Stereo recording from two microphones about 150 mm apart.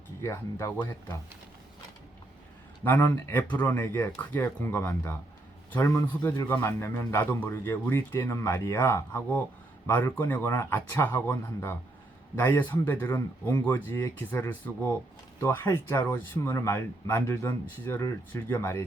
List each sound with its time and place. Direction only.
0.2 s speech: 20° left (ahead or behind)
2.8 s a man's voice: 15° left (ahead or behind)